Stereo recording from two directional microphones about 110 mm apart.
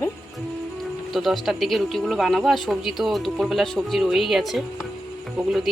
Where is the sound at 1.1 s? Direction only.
Centre (ahead or behind).